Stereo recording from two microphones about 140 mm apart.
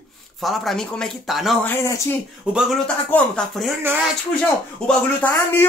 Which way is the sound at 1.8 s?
20° left (ahead or behind).